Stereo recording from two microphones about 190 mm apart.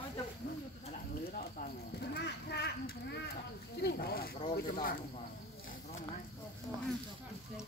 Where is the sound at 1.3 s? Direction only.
45° left (ahead or behind).